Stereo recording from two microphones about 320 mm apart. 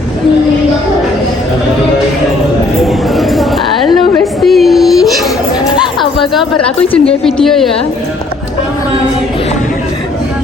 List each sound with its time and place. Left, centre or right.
2.8 s speech: centre